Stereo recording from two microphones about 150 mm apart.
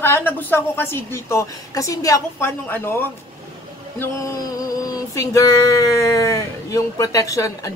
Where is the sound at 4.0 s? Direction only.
20° left (ahead or behind).